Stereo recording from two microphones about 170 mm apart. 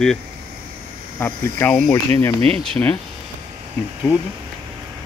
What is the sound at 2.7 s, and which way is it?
Speech, 10° left (ahead or behind).